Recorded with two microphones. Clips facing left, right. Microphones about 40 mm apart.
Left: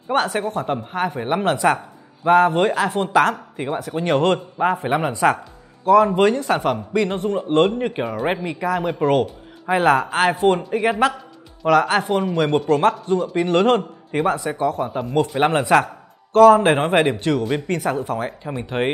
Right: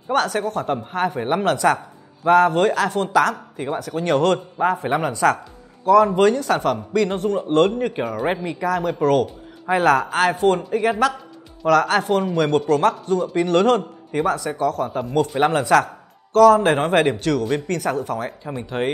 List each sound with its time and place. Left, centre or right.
0.1 s speech: centre
1.4 s speech: left
3.1 s speech: left
3.6 s speech: centre
12.0 s speech: centre
14.9 s a man's voice: centre
15.4 s speech: centre
17.6 s speech: left